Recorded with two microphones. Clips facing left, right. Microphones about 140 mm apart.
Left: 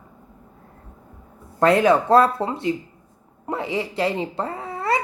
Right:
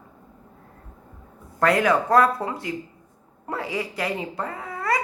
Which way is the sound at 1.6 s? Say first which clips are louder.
Left 4 dB; 25° left (ahead or behind).